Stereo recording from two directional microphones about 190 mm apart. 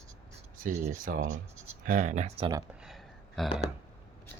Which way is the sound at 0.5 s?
45° right (ahead or behind).